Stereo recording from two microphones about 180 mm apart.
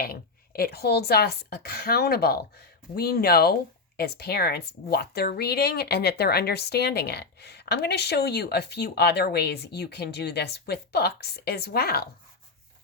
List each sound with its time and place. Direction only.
0.0 s a woman's voice: 60° left (ahead or behind)